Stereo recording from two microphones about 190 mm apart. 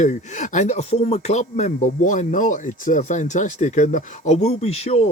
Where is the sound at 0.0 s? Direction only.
40° left (ahead or behind).